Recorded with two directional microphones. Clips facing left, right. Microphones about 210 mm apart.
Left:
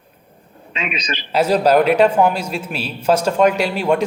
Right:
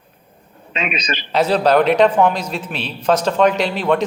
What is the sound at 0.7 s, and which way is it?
Speech, 45° right (ahead or behind).